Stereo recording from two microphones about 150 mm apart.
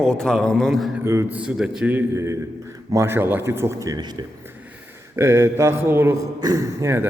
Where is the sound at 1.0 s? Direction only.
20° right (ahead or behind).